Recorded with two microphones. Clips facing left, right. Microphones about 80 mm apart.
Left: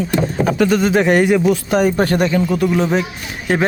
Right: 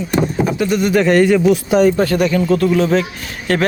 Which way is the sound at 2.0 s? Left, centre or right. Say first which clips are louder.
Right 1 dB; left.